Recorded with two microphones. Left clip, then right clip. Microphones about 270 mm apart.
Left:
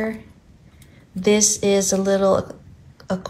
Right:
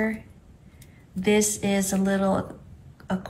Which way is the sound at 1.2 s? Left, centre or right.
Centre.